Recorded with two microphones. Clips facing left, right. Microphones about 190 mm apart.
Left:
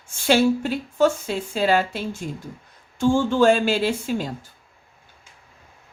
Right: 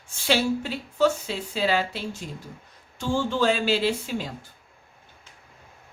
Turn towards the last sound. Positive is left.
turn(degrees=50)  # may be behind; listen again after turning